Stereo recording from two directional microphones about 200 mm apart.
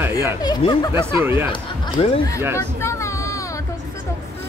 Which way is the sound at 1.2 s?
10° right (ahead or behind).